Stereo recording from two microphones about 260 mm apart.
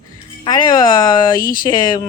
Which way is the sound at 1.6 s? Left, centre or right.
Centre.